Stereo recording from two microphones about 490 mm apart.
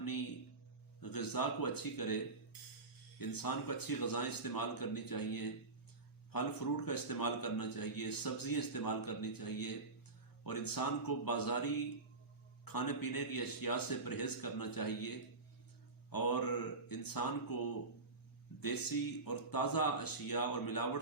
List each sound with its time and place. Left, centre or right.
1.0 s a man's voice: left
3.2 s a man's voice: left
18.6 s a man's voice: left